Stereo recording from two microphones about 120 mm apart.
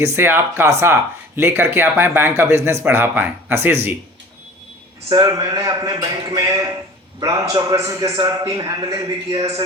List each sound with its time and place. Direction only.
0.0 s speech: 20° right (ahead or behind)
5.0 s a man's voice: 30° right (ahead or behind)